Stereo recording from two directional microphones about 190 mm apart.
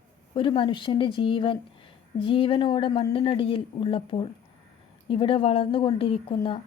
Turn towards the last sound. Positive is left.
turn(degrees=30)  # may be behind; listen again after turning